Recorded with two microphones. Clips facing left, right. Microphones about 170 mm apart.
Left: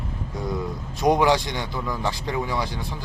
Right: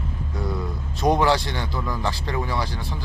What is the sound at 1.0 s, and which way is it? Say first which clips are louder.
Speech: left 1 dB; 15° left (ahead or behind).